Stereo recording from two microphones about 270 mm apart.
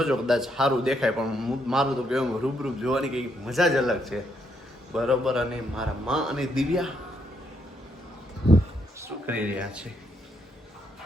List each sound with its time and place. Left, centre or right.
0.0 s a man's voice: centre
9.0 s speech: centre